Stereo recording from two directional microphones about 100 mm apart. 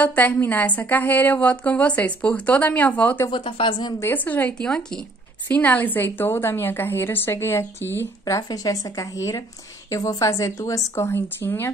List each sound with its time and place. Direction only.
0.0 s a woman's voice: 15° left (ahead or behind)
3.3 s speech: 55° left (ahead or behind)
4.0 s a woman's voice: 20° left (ahead or behind)
8.4 s a woman's voice: 35° left (ahead or behind)